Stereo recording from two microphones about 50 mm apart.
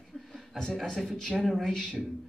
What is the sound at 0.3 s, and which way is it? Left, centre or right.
Chuckle, centre.